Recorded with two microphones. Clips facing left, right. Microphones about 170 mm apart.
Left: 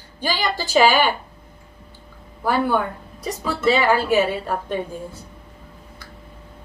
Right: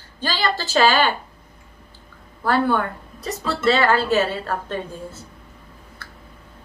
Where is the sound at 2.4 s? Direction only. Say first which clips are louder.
Even; 10° left (ahead or behind).